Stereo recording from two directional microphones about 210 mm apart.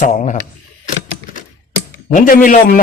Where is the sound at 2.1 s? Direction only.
40° left (ahead or behind).